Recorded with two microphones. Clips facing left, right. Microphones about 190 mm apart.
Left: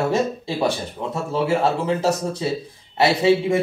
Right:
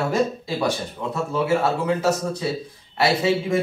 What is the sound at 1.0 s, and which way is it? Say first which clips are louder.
A man's voice: left 1 dB; 30° left (ahead or behind).